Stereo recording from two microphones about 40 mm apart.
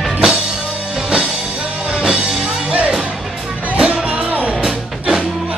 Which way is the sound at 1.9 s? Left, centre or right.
Right.